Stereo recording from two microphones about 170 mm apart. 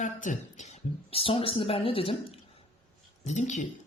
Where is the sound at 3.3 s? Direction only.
45° left (ahead or behind).